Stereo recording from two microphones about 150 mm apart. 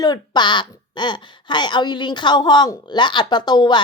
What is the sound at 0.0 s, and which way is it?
A woman's voice, 30° left (ahead or behind).